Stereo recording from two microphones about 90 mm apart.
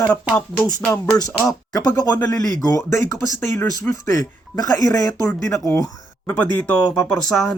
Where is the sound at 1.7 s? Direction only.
40° left (ahead or behind).